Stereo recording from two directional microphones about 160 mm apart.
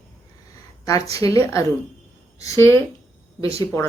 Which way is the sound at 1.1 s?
20° left (ahead or behind).